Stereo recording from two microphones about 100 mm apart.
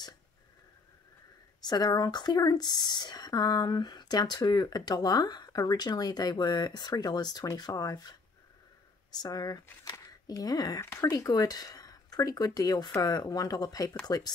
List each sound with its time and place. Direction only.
1.7 s speech: 40° left (ahead or behind)
9.2 s speech: 40° left (ahead or behind)